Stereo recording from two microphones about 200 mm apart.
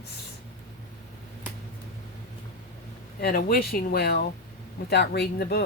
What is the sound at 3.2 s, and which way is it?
Speech, 45° left (ahead or behind).